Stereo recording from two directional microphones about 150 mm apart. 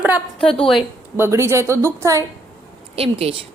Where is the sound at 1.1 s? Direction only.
15° right (ahead or behind).